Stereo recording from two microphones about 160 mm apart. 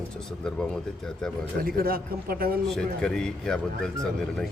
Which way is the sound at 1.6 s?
65° right (ahead or behind).